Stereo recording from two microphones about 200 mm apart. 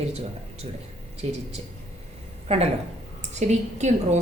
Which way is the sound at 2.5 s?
30° right (ahead or behind).